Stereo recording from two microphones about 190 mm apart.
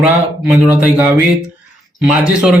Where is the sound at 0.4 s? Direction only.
5° right (ahead or behind).